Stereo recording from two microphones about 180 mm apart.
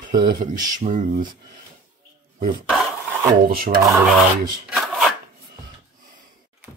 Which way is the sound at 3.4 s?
55° right (ahead or behind).